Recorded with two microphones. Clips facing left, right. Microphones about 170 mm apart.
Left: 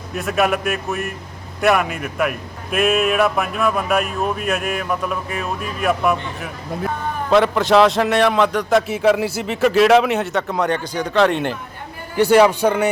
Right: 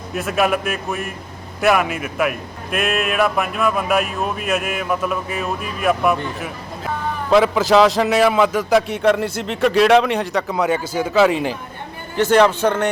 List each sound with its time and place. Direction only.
0.1 s a man's voice: centre (ahead or behind)
12.1 s a man's voice: 10° left (ahead or behind)